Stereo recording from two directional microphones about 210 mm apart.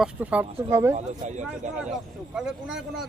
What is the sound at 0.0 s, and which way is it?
Speech, 5° right (ahead or behind).